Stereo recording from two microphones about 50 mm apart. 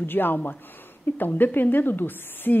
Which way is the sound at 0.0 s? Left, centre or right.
Left.